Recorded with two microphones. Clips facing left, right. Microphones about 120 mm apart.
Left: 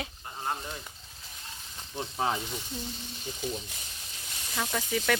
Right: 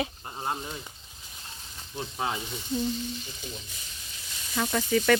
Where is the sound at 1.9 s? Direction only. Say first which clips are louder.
Left 1 dB; 35° left (ahead or behind).